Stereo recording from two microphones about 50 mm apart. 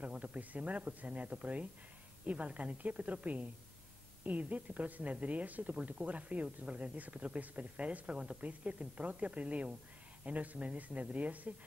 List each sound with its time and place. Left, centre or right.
0.0 s a woman's voice: right